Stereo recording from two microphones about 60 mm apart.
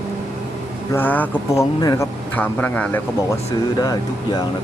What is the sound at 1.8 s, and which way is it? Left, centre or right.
Speech, left.